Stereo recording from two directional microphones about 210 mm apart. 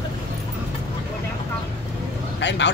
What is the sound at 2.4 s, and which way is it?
Speech, 55° left (ahead or behind).